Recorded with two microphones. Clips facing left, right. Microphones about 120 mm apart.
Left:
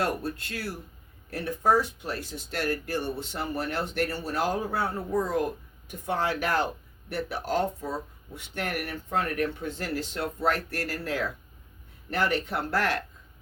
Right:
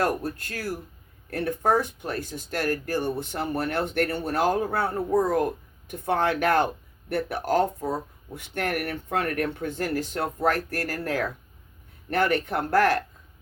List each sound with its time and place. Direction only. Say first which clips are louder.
0.0 s speech: right 3 dB; 45° right (ahead or behind)
1.3 s speech: right 1 dB; 55° right (ahead or behind)